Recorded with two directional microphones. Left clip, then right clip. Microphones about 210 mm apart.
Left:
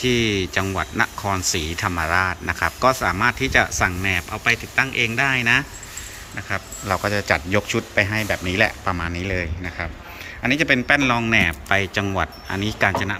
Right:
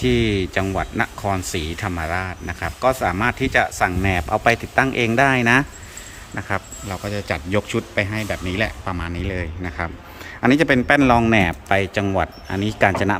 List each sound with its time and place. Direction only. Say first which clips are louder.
0.0 s speech: even; 15° right (ahead or behind)
6.8 s speech: left 6 dB; 5° right (ahead or behind)